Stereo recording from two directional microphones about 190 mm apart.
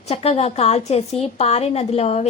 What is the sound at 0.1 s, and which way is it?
A woman's voice, 35° left (ahead or behind).